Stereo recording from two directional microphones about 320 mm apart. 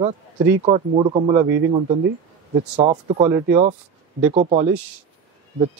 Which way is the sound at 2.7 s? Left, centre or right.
Centre.